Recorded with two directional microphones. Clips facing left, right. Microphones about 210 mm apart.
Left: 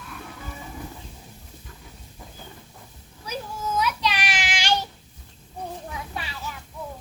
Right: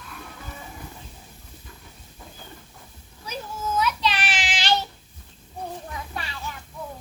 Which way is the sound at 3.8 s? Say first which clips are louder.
Right 1 dB; 10° left (ahead or behind).